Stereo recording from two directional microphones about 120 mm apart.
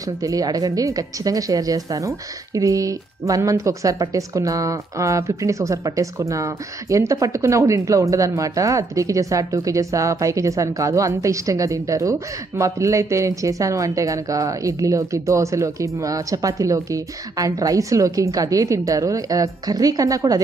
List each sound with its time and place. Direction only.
0.2 s speech: 30° right (ahead or behind)